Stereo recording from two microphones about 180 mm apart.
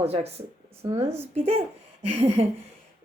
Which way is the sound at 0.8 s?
15° right (ahead or behind).